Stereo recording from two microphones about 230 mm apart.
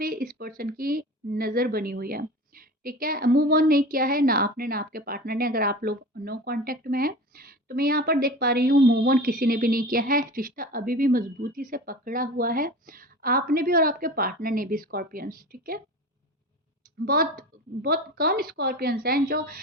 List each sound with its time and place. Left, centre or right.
0.0 s a woman's voice: right
17.1 s a woman's voice: right